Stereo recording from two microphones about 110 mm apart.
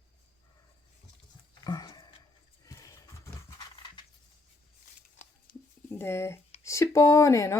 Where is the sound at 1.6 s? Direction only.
40° left (ahead or behind).